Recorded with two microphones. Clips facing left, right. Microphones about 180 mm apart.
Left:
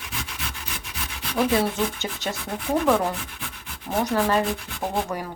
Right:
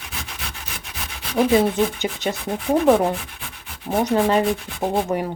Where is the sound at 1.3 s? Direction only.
25° right (ahead or behind).